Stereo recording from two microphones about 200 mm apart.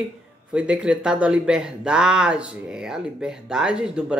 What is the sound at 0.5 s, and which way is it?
Speech, 5° right (ahead or behind).